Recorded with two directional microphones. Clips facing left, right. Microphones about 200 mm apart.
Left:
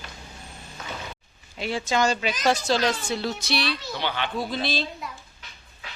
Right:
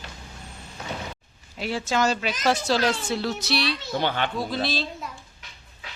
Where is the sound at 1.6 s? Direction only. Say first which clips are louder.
Even; 5° right (ahead or behind).